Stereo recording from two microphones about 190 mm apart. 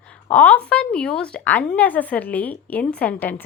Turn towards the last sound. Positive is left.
turn(degrees=10)  # may be behind; listen again after turning